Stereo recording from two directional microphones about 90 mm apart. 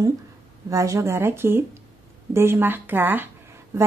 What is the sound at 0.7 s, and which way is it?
Speech, 35° right (ahead or behind).